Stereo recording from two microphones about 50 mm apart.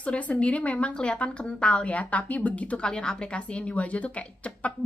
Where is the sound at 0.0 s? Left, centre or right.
Left.